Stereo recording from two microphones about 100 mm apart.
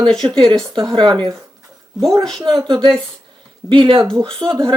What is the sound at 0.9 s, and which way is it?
Speech, 50° right (ahead or behind).